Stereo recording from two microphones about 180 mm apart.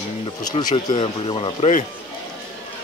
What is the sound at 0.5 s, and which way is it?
Speech, 30° left (ahead or behind).